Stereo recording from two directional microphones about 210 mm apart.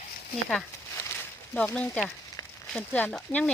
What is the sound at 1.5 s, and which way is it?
Speech, 5° left (ahead or behind).